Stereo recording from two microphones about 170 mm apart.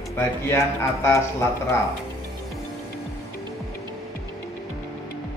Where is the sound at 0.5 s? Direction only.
15° left (ahead or behind).